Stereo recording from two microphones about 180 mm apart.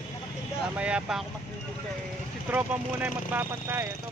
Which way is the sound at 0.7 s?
5° right (ahead or behind).